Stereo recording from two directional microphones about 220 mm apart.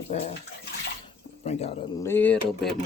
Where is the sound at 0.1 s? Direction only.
30° left (ahead or behind).